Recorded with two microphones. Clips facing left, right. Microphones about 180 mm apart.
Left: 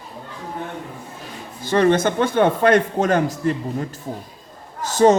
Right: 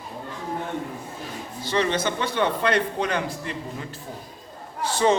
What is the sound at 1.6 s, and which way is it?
A man's voice, 50° left (ahead or behind).